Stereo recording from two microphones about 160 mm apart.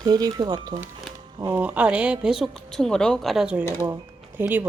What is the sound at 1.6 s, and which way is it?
Speech, 10° right (ahead or behind).